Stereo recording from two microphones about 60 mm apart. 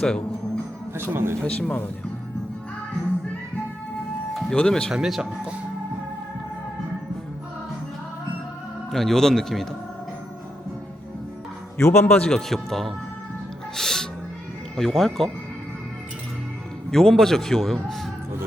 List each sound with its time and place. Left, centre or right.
0.0 s music: centre
0.9 s speech: right
1.4 s speech: centre
4.4 s speech: centre
4.9 s speech: centre
8.9 s speech: centre
11.8 s speech: left
12.1 s speech: centre
12.5 s a man's voice: centre
16.9 s a man's voice: centre